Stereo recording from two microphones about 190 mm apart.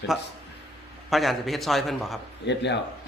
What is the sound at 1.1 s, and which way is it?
A man's voice, centre (ahead or behind).